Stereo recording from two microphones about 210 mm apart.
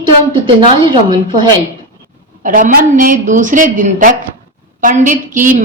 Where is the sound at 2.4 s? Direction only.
40° right (ahead or behind).